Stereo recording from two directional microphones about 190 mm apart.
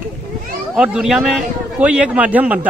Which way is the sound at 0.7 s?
5° right (ahead or behind).